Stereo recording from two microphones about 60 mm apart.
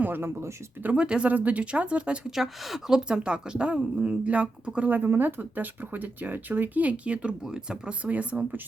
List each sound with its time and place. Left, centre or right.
0.0 s speech: right
0.9 s speech: centre
2.3 s a woman's voice: centre; by 4.9 s right
4.9 s speech: right